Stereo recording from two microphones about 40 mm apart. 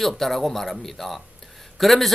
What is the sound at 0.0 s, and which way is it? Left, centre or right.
A man's voice, centre.